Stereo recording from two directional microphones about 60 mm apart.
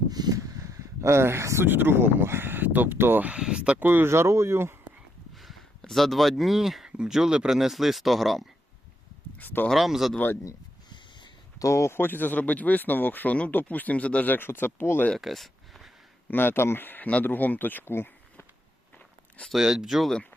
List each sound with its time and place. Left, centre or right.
0.1 s a sound: right
1.6 s speech: right
3.4 s speech: centre
3.8 s speech: right
4.1 s speech: right
5.9 s speech: centre
9.4 s speech: left
9.6 s speech: centre
11.6 s speech: left
14.3 s speech: left
15.2 s a sound: centre
16.3 s speech: left
19.5 s speech: centre